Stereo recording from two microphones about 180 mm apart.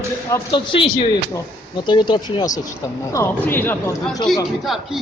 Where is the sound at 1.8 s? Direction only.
25° left (ahead or behind).